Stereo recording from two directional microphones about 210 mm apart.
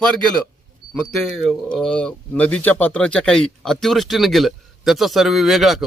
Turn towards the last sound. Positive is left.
turn(degrees=0)  # may be behind; listen again after turning